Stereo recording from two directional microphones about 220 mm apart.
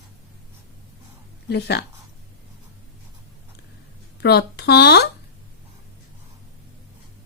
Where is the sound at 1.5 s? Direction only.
50° left (ahead or behind).